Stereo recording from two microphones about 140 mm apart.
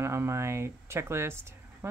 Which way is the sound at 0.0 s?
20° right (ahead or behind).